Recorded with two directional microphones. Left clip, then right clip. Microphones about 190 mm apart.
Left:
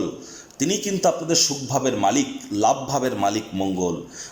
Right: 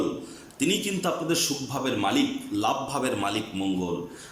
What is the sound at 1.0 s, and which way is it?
A man's voice, 20° left (ahead or behind).